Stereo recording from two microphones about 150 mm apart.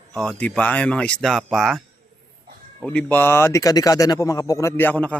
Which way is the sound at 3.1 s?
15° left (ahead or behind).